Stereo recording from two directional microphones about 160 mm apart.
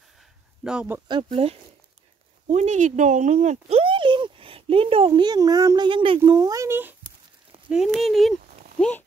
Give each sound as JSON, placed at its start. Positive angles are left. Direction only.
{"t": 0.7, "sound": "speech", "side_deg": -10}
{"t": 1.0, "sound": "speech", "side_deg": -35}
{"t": 7.7, "sound": "speech", "side_deg": 0}